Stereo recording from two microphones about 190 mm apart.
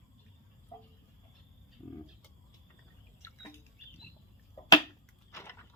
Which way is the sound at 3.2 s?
15° left (ahead or behind).